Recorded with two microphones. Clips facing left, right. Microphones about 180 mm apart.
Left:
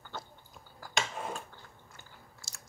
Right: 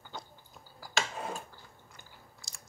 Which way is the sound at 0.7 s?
5° right (ahead or behind).